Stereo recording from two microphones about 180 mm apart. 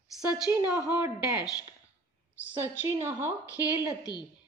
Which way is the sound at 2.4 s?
10° right (ahead or behind).